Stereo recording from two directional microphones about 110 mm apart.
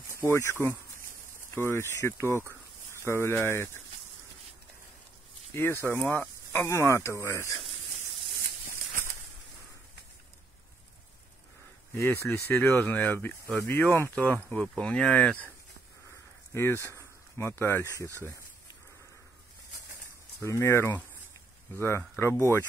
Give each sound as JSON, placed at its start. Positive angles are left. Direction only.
{"t": 0.1, "sound": "speech", "side_deg": 25}
{"t": 5.5, "sound": "speech", "side_deg": 20}
{"t": 11.9, "sound": "speech", "side_deg": 25}
{"t": 16.5, "sound": "speech", "side_deg": 25}
{"t": 20.4, "sound": "speech", "side_deg": 25}